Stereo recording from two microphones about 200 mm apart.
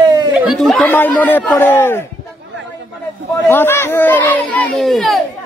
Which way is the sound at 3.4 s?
10° left (ahead or behind).